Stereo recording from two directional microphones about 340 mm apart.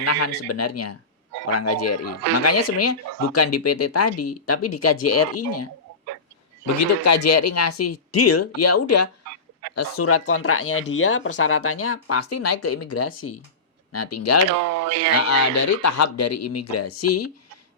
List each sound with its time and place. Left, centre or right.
0.0 s speech: left
7.0 s speech: left
14.6 s speech: right
15.3 s speech: left